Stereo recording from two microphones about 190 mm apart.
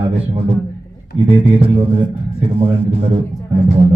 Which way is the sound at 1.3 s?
30° right (ahead or behind).